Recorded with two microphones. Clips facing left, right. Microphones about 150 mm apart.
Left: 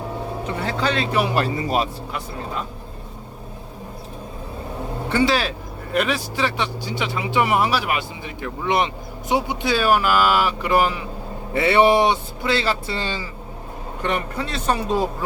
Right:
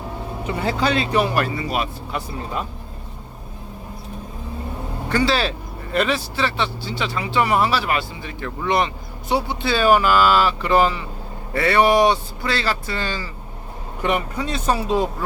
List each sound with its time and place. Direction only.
0.6 s speech: 10° right (ahead or behind)
1.3 s speech: 25° left (ahead or behind)
1.5 s speech: 40° left (ahead or behind)
5.1 s speech: 15° left (ahead or behind)
11.5 s speech: 20° left (ahead or behind)
14.0 s speech: 15° right (ahead or behind)
14.8 s a woman's voice: centre (ahead or behind)